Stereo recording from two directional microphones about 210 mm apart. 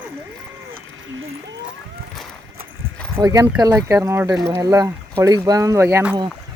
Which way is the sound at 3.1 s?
15° right (ahead or behind).